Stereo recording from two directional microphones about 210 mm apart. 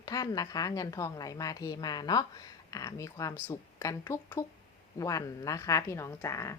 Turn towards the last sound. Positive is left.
turn(degrees=15)  # may be behind; listen again after turning